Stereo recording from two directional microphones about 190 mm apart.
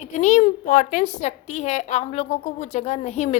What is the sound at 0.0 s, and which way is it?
A woman's voice, 40° left (ahead or behind).